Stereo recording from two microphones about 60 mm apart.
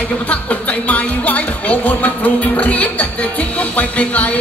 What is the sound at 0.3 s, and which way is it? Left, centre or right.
Speech, left.